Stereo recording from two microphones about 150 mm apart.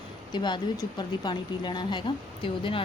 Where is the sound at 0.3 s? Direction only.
30° left (ahead or behind).